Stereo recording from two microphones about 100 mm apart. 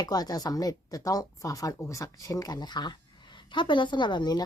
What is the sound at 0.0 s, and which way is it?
A woman's voice, 40° left (ahead or behind).